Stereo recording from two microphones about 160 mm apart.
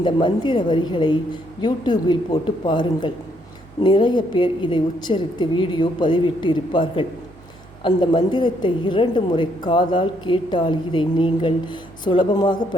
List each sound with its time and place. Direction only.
0.0 s a woman's voice: 30° left (ahead or behind)